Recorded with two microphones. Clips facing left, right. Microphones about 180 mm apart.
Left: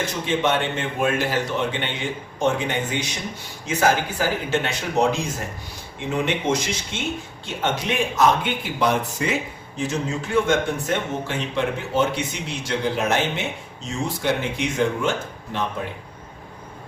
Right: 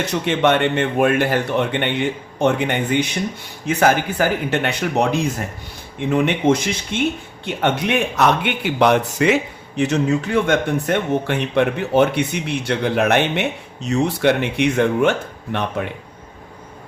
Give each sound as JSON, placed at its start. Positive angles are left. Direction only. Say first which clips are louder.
{"t": 0.0, "sound": "a man's voice", "louder": "right 5 dB", "side_deg": -65}